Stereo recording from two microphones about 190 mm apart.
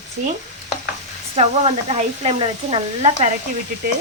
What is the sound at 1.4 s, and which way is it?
Speech, 30° right (ahead or behind).